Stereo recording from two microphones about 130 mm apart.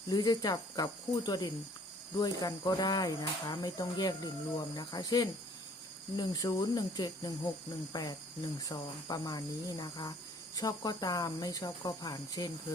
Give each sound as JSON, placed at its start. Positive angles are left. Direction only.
{"t": 0.1, "sound": "speech", "side_deg": 30}
{"t": 8.6, "sound": "cricket", "side_deg": 30}